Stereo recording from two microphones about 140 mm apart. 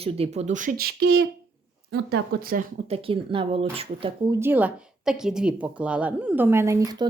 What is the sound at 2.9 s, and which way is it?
Speech, 40° right (ahead or behind).